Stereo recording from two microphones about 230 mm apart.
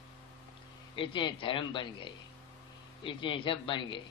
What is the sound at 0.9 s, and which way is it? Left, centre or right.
A man's voice, left.